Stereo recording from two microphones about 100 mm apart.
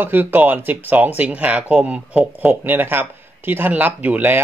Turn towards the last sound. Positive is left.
turn(degrees=-15)  # may be behind; listen again after turning